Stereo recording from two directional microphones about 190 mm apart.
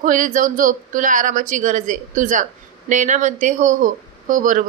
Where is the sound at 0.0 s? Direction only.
45° right (ahead or behind).